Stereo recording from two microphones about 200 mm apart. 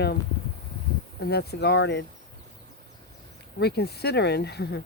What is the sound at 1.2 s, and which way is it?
Speech, 55° left (ahead or behind).